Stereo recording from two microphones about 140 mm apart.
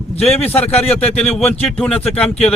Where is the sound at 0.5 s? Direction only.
10° left (ahead or behind).